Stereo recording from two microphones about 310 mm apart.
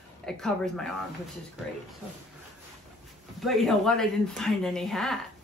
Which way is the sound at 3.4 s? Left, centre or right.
Centre.